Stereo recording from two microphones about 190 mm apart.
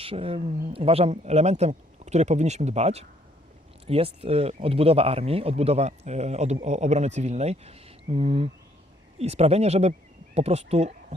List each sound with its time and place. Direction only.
0.0 s speech: 30° right (ahead or behind)